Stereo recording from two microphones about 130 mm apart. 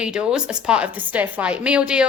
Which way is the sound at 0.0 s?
5° right (ahead or behind).